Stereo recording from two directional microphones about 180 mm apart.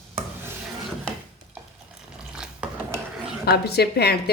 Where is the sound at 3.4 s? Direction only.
60° left (ahead or behind).